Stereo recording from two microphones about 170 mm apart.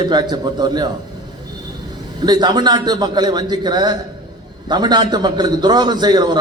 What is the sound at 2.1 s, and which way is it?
A man's voice, 25° right (ahead or behind).